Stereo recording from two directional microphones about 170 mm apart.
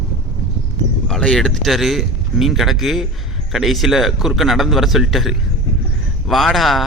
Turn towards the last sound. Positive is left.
turn(degrees=0)  # may be behind; listen again after turning